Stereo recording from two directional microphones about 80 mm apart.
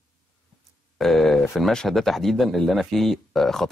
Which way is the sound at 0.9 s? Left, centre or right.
Centre.